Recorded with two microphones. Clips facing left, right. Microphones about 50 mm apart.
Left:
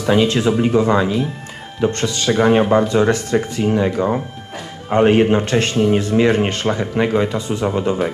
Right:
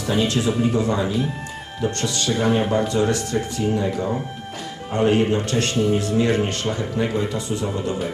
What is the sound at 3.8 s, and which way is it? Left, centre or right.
Speech, left.